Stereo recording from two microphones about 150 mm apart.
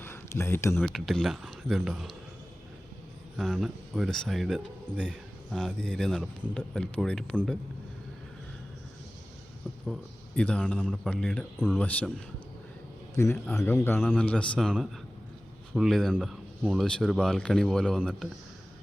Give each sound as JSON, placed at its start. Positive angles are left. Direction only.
{"t": 0.0, "sound": "a sound", "side_deg": 15}
{"t": 0.8, "sound": "speech", "side_deg": 0}
{"t": 3.3, "sound": "speech", "side_deg": 0}
{"t": 9.8, "sound": "a man's voice", "side_deg": 5}
{"t": 13.1, "sound": "speech", "side_deg": 15}